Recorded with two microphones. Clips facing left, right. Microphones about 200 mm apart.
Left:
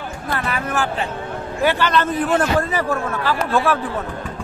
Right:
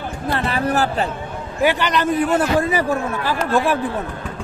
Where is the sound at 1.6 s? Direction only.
15° right (ahead or behind).